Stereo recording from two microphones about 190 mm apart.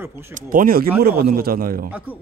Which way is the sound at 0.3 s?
45° right (ahead or behind).